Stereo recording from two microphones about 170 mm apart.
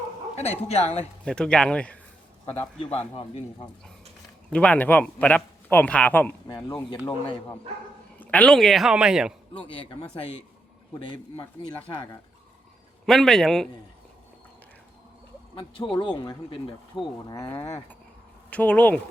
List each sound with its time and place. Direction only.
0.3 s speech: 40° left (ahead or behind)
1.2 s a woman's voice: 5° left (ahead or behind)
2.5 s speech: 35° left (ahead or behind)
4.5 s a man's voice: 5° left (ahead or behind)
6.5 s speech: 25° left (ahead or behind)
8.2 s a woman's voice: 10° left (ahead or behind)
9.7 s speech: 30° left (ahead or behind)
13.1 s a woman's voice: centre (ahead or behind)
15.5 s speech: 30° left (ahead or behind)
18.5 s a man's voice: 10° left (ahead or behind)